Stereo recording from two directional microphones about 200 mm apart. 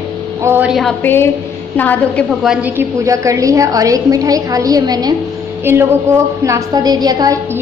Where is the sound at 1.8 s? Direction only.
5° left (ahead or behind).